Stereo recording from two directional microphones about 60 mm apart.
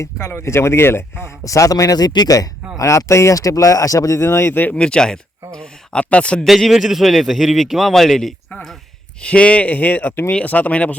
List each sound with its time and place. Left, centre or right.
0.0 s speech: left
1.5 s speech: left
2.7 s speech: left
4.2 s speech: left
4.7 s speech: centre
6.4 s a man's voice: centre
9.2 s speech: centre